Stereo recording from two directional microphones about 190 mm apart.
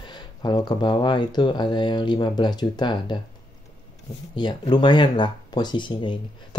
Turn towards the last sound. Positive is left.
turn(degrees=25)  # may be behind; listen again after turning